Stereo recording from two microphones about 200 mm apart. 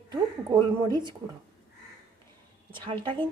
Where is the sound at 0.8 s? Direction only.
20° right (ahead or behind).